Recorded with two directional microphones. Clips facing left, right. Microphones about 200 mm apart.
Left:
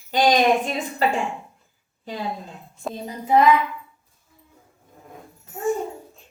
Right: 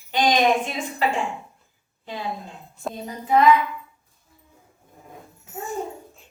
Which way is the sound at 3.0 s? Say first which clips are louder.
Left 2 dB; 25° left (ahead or behind).